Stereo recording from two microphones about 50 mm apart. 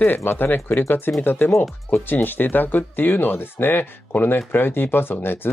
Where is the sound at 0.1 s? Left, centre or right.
Left.